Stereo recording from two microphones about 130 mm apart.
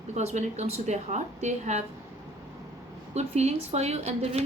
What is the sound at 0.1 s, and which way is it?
A woman's voice, 60° right (ahead or behind).